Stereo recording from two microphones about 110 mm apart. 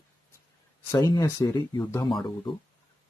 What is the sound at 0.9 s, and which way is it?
Speech, 30° left (ahead or behind).